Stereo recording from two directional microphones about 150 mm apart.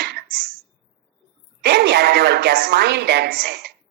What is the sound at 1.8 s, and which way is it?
Speech, 90° right.